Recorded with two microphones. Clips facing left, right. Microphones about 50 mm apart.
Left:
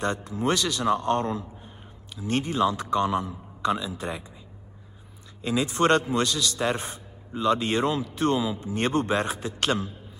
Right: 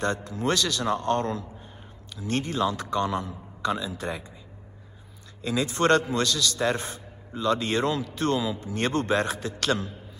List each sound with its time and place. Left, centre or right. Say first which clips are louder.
0.3 s a man's voice: left 1 dB; left
5.4 s a man's voice: left 1 dB; left